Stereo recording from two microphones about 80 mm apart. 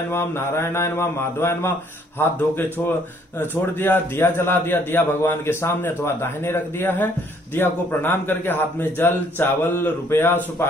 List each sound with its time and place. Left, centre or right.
0.1 s a man's voice: left